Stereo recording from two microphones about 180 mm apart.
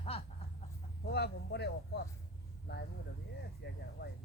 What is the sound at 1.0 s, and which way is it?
Speech, 65° left (ahead or behind).